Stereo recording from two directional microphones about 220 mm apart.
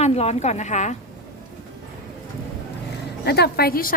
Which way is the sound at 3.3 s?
45° left (ahead or behind).